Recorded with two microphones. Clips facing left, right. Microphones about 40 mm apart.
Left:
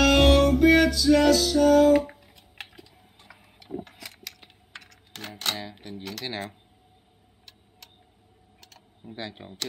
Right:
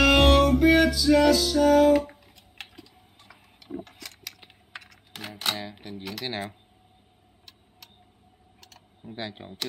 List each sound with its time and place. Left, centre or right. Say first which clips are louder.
0.0 s music: even; centre
2.0 s tick-tock: left 1 dB; centre
3.8 s typing: even; centre
8.5 s typing: even; centre
9.1 s speech: right 1 dB; centre